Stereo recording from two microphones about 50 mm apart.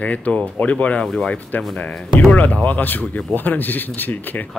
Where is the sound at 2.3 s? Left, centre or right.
Left.